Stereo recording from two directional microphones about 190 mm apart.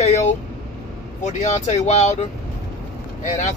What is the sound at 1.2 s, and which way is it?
Speech, 35° left (ahead or behind).